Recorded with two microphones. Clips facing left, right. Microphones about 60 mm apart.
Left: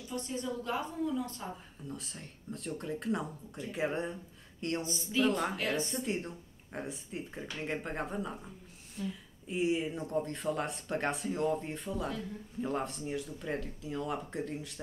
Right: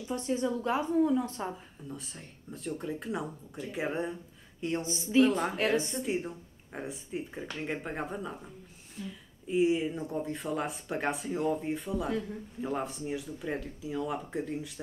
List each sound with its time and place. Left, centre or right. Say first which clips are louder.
0.1 s a woman's voice: right 6 dB; right
1.5 s speech: right 1 dB; centre